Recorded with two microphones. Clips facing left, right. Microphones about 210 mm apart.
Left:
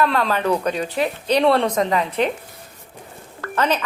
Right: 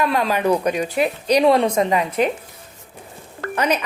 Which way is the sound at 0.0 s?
15° right (ahead or behind).